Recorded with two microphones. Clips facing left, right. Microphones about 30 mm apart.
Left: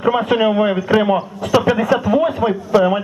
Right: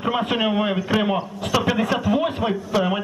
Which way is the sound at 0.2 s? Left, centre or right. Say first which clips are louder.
Left 6 dB; left.